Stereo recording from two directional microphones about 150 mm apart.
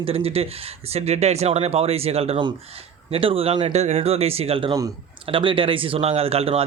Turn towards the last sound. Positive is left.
turn(degrees=-40)  # may be behind; listen again after turning